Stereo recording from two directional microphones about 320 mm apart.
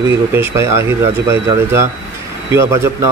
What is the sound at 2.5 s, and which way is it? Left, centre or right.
Speech, centre.